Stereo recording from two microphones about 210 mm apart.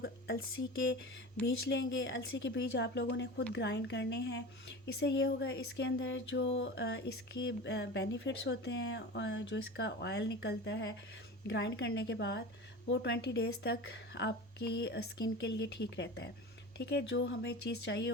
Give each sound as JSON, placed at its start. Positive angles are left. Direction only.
{"t": 1.4, "sound": "speech", "side_deg": 5}
{"t": 1.7, "sound": "speech", "side_deg": 60}